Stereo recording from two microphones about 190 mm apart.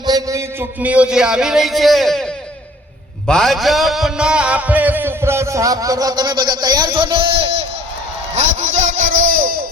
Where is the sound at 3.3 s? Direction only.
Centre (ahead or behind); by 9.7 s 50° right (ahead or behind).